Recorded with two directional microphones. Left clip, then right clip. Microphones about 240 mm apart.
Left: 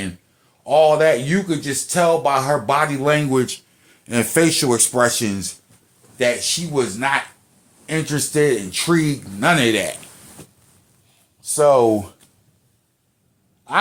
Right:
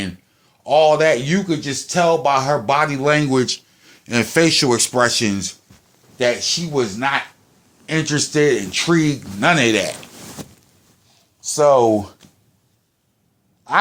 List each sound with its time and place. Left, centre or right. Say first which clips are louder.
0.6 s speech: even; right
11.5 s speech: right 1 dB; right
13.7 s speech: right 2 dB; right